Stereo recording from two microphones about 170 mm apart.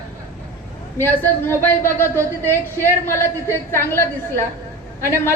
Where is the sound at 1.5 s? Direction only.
10° left (ahead or behind).